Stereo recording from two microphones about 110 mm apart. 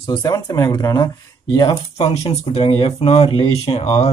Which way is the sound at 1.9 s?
75° left (ahead or behind).